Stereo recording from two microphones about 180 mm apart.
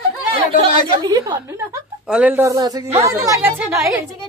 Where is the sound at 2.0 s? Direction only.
5° right (ahead or behind).